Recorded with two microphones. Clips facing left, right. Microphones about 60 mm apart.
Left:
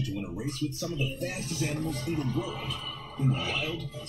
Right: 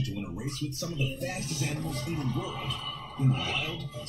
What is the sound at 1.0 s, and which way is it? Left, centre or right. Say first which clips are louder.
Speech: right 2 dB; centre.